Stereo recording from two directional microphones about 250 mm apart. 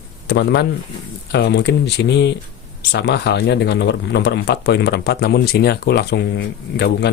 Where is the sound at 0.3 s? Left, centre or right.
Left.